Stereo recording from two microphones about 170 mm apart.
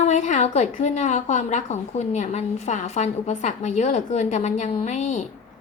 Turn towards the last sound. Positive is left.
turn(degrees=45)  # may be behind; listen again after turning